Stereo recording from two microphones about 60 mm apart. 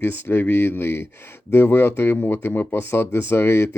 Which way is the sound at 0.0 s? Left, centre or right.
Left.